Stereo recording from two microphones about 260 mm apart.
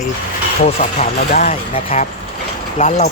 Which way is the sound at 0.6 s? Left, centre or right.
Left.